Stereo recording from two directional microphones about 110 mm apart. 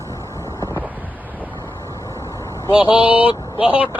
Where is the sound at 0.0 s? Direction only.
25° left (ahead or behind).